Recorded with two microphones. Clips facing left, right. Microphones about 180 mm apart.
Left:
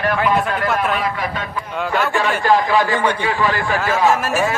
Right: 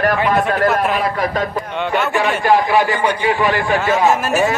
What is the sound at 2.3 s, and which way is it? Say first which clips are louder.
A man's voice: right 2 dB; 20° right (ahead or behind).